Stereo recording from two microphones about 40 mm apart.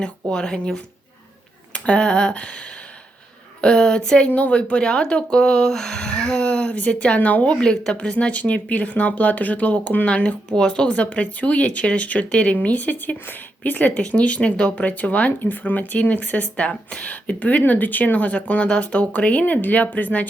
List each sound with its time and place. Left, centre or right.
0.0 s speech: centre
1.7 s speech: left
3.6 s speech: centre
4.4 s speech: left
10.5 s speech: left
12.9 s speech: left
13.9 s speech: left
15.3 s speech: left